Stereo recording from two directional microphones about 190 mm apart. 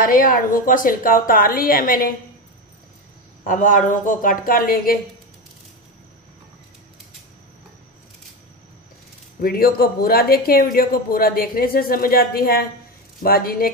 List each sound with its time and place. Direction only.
0.0 s speech: 45° left (ahead or behind)
3.4 s speech: 45° left (ahead or behind)
9.4 s speech: 50° left (ahead or behind)